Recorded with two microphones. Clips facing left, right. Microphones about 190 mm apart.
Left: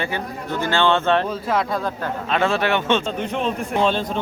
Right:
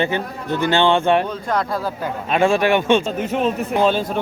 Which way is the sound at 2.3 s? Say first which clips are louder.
Right 4 dB; 15° right (ahead or behind).